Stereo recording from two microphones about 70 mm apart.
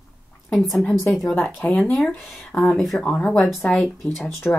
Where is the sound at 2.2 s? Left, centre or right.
Centre.